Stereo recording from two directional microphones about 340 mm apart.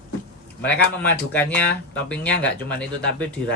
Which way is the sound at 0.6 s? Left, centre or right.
Centre.